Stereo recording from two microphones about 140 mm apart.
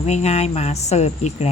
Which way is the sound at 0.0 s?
50° left (ahead or behind).